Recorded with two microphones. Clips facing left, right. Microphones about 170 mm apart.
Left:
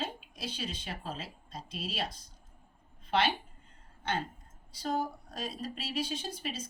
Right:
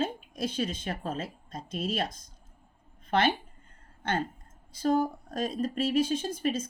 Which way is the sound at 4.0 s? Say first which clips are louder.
Right 4 dB; 50° right (ahead or behind).